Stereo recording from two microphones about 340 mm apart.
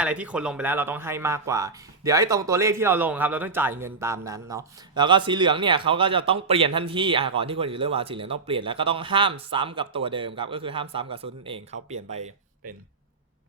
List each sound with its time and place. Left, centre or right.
0.0 s speech: centre